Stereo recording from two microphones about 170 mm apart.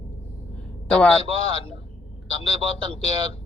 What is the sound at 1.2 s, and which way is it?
Speech, 35° left (ahead or behind).